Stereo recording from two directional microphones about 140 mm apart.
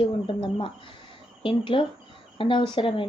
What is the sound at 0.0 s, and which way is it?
Speech, 35° left (ahead or behind).